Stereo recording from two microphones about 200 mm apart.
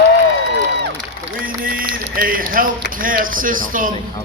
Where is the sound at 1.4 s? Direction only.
45° right (ahead or behind).